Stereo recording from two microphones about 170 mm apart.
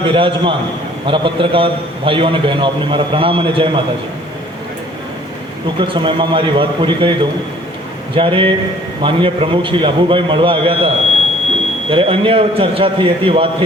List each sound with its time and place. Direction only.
0.0 s a man's voice: 30° right (ahead or behind)
5.6 s a man's voice: 30° right (ahead or behind)